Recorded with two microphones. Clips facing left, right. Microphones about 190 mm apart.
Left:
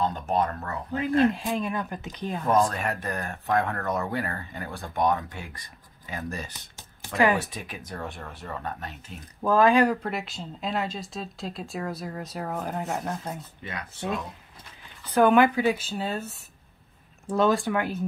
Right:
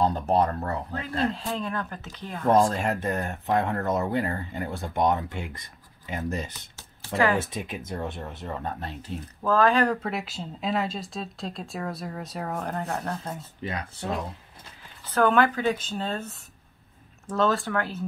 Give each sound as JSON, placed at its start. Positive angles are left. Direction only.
{"t": 0.0, "sound": "speech", "side_deg": -35}
{"t": 0.9, "sound": "speech", "side_deg": 15}
{"t": 2.4, "sound": "speech", "side_deg": -30}
{"t": 9.4, "sound": "speech", "side_deg": 15}
{"t": 10.0, "sound": "speech", "side_deg": 0}
{"t": 13.4, "sound": "speech", "side_deg": -30}
{"t": 15.1, "sound": "speech", "side_deg": 15}